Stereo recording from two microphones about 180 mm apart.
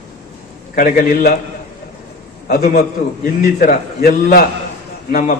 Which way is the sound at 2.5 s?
55° left (ahead or behind).